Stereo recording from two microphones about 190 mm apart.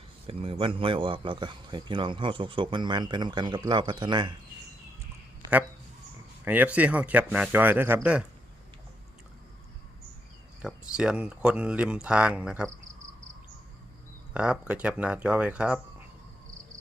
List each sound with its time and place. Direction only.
0.3 s a man's voice: 30° right (ahead or behind)
6.4 s speech: 10° right (ahead or behind)
10.6 s speech: 5° right (ahead or behind)
14.3 s speech: 5° right (ahead or behind)